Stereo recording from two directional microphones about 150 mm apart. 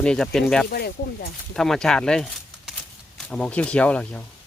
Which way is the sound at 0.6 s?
90° left.